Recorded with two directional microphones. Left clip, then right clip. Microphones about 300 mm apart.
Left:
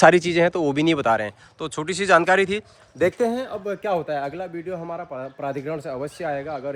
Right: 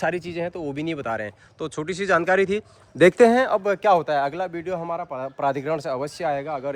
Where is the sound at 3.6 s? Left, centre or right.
Centre.